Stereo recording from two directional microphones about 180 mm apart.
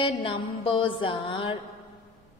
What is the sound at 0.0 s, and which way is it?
A woman's voice, 30° left (ahead or behind).